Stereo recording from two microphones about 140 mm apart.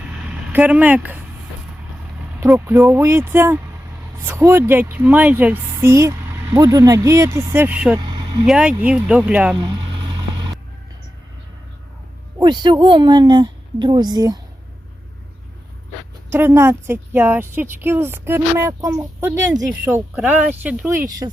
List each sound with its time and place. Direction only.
0.3 s speech: 10° right (ahead or behind)
2.6 s a woman's voice: 15° right (ahead or behind)
7.9 s vehicle: 35° right (ahead or behind)
8.4 s a woman's voice: 5° right (ahead or behind)
12.4 s a woman's voice: 30° right (ahead or behind)
16.3 s a woman's voice: 15° right (ahead or behind)
21.2 s speech: 30° right (ahead or behind)